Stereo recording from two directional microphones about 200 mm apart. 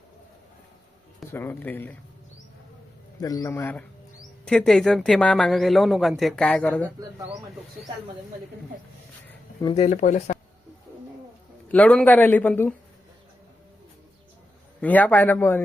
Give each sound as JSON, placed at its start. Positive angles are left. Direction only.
{"t": 1.3, "sound": "a man's voice", "side_deg": 10}
{"t": 3.2, "sound": "a man's voice", "side_deg": 15}
{"t": 9.7, "sound": "speech", "side_deg": 35}
{"t": 11.7, "sound": "a man's voice", "side_deg": 5}
{"t": 14.8, "sound": "a man's voice", "side_deg": 10}